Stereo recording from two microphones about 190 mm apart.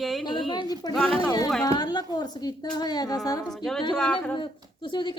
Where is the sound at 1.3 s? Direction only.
20° left (ahead or behind).